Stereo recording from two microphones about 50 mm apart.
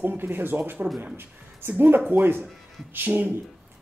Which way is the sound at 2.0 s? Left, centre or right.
Right.